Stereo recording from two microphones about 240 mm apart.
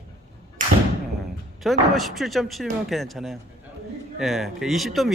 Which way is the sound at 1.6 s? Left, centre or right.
Centre.